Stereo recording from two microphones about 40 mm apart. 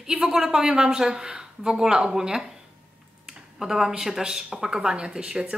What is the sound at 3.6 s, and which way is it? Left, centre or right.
A woman's voice, centre.